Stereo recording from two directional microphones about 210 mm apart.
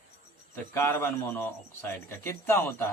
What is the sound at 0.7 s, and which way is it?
A man's voice, 10° left (ahead or behind).